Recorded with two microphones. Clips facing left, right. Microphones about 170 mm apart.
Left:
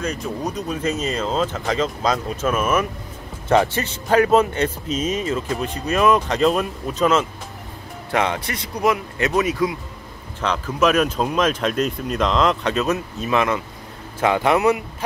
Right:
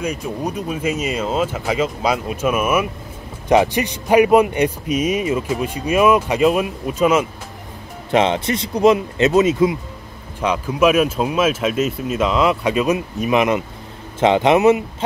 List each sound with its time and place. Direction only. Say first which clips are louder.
0.0 s speech: right 2 dB; 10° right (ahead or behind)
8.1 s speech: right 5 dB; 25° right (ahead or behind)
10.4 s speech: right 3 dB; 10° right (ahead or behind)